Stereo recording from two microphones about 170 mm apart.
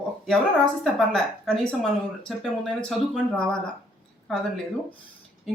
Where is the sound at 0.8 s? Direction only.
5° left (ahead or behind).